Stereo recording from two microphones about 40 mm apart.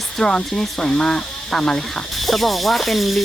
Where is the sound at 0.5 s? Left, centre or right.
Centre.